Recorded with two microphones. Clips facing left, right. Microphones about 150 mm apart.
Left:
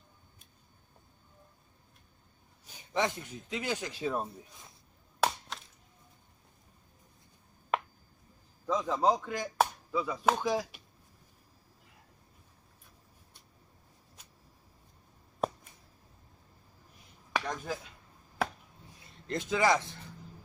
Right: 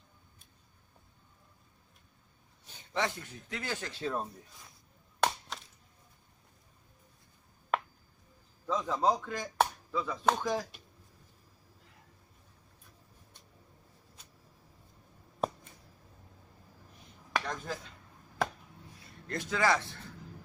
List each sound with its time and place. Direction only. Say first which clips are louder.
2.9 s speech: left 2 dB; 20° left (ahead or behind)
5.2 s chop: even; 5° left (ahead or behind)
8.6 s a sound: left 2 dB; 15° left (ahead or behind)
9.0 s speech: left 1 dB; 10° left (ahead or behind)
17.3 s a sound: left 1 dB; 10° left (ahead or behind)
19.3 s speech: left 2 dB; 20° left (ahead or behind)